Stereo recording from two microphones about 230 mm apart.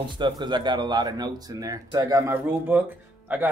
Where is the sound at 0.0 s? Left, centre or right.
Centre.